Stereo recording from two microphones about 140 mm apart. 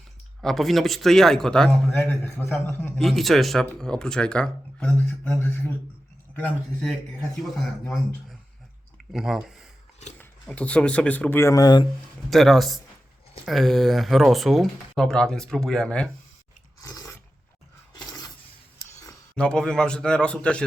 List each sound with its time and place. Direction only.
0.4 s speech: centre (ahead or behind)
2.0 s speech: 15° left (ahead or behind)
3.0 s speech: centre (ahead or behind)
9.1 s speech: 5° right (ahead or behind)
10.2 s speech: 10° left (ahead or behind); by 11.9 s 30° left (ahead or behind)
12.3 s speech: centre (ahead or behind)
16.8 s a sound: 25° left (ahead or behind)
19.4 s speech: 5° left (ahead or behind)